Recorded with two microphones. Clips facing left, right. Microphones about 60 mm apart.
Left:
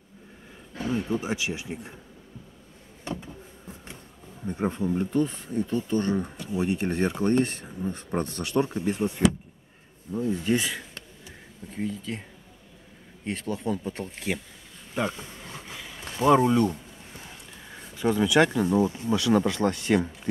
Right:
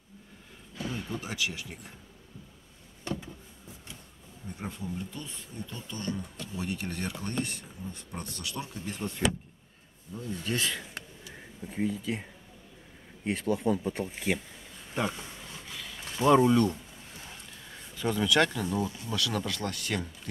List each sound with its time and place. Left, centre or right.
0.8 s speech: left
3.2 s a sound: left
4.5 s speech: left
6.5 s speech: left
8.9 s speech: centre
11.6 s speech: centre
15.7 s a sound: centre
16.2 s speech: centre